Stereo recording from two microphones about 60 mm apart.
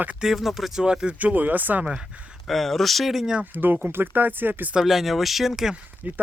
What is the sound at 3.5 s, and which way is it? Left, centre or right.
Speech, right.